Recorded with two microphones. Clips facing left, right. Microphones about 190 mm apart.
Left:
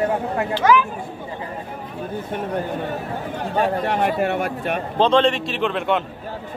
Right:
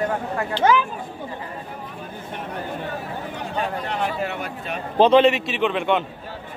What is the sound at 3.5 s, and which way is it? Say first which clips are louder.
A man's voice: left 6 dB; 55° left (ahead or behind).